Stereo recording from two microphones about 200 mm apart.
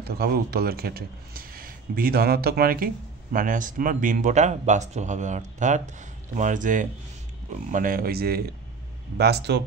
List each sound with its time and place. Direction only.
0.0 s speech: 50° right (ahead or behind)